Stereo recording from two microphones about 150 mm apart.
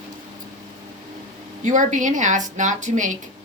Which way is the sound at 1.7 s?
60° right (ahead or behind).